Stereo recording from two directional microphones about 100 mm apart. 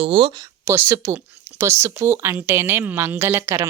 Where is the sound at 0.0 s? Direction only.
65° right (ahead or behind).